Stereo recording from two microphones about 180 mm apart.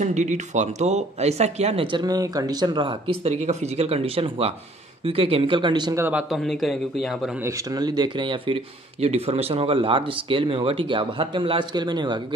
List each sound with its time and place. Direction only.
0.0 s speech: 40° right (ahead or behind); by 6.0 s 25° right (ahead or behind)
6.0 s speech: 5° right (ahead or behind)
7.4 s speech: 20° right (ahead or behind)